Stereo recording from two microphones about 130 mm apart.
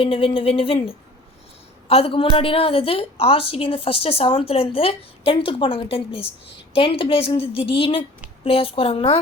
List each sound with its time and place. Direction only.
0.0 s a woman's voice: 45° left (ahead or behind)